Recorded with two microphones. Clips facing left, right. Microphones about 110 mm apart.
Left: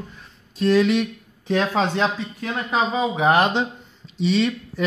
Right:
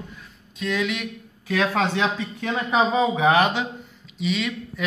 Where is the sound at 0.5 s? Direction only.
35° left (ahead or behind).